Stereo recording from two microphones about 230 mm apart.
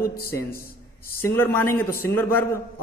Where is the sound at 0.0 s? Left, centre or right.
Left.